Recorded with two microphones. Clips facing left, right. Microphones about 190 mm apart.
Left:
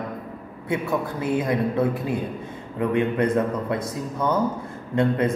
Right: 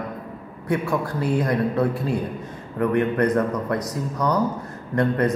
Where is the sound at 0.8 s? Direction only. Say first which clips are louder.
Right 1 dB; 20° left (ahead or behind).